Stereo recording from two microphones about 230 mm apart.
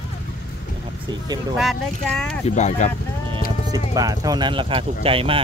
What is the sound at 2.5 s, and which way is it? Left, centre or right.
Speech, left.